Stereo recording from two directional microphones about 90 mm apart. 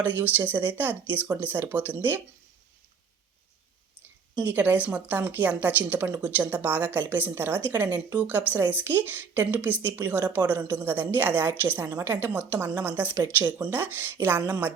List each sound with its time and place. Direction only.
0.0 s a woman's voice: 20° right (ahead or behind)
4.4 s a woman's voice: 20° right (ahead or behind)